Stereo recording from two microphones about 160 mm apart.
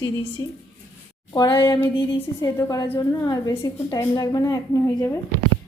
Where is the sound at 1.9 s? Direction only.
30° left (ahead or behind).